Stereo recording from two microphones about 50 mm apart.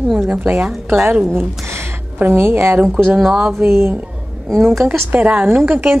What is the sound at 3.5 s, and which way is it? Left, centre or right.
Speech, right.